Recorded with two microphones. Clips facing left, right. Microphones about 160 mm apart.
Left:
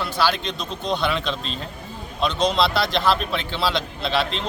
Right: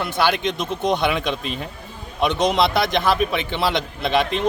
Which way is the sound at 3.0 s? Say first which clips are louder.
Right 2 dB; 15° right (ahead or behind).